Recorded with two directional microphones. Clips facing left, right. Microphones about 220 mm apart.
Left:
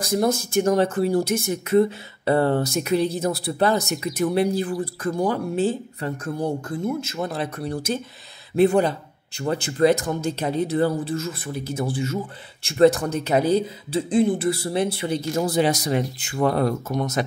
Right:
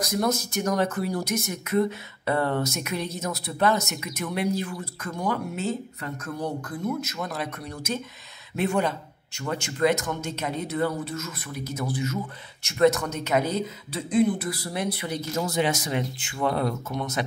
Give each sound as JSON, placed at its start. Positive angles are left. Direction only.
{"t": 0.0, "sound": "speech", "side_deg": 30}